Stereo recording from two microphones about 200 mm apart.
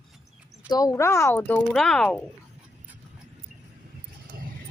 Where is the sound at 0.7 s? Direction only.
15° left (ahead or behind); by 2.2 s centre (ahead or behind).